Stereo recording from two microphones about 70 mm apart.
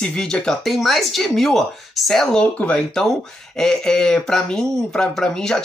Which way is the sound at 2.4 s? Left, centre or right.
Centre.